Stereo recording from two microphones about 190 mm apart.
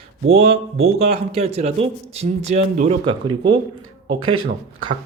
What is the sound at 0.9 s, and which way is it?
Speech, 30° right (ahead or behind).